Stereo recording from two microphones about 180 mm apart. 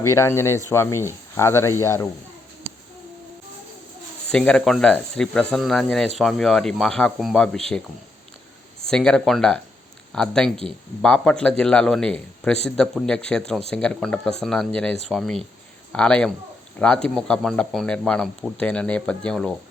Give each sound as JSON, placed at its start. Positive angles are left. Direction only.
{"t": 0.0, "sound": "speech", "side_deg": 15}
{"t": 4.3, "sound": "speech", "side_deg": 5}
{"t": 8.9, "sound": "speech", "side_deg": 5}